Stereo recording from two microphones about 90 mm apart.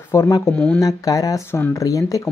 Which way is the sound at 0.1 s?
35° left (ahead or behind).